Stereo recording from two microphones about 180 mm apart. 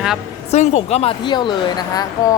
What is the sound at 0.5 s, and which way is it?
A woman's voice, 40° left (ahead or behind).